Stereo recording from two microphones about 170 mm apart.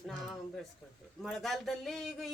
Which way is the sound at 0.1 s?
Centre (ahead or behind).